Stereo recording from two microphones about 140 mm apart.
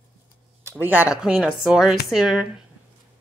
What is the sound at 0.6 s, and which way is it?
Speech, 10° right (ahead or behind).